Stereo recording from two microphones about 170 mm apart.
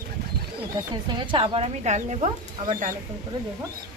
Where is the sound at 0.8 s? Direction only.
25° right (ahead or behind); by 2.9 s 50° right (ahead or behind).